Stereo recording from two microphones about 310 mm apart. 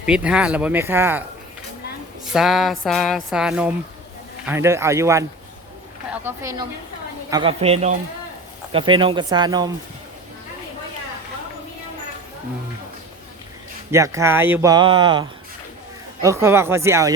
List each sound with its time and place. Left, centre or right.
0.0 s music: centre
2.3 s music: centre
4.4 s speech: centre
6.2 s a woman's voice: centre
13.9 s speech: centre